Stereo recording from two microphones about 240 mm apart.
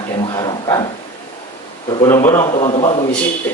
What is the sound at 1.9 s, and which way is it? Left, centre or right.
A man's voice, centre.